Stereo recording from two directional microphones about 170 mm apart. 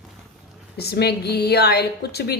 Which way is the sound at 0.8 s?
70° left (ahead or behind).